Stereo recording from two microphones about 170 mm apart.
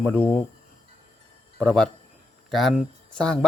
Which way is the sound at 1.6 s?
5° left (ahead or behind).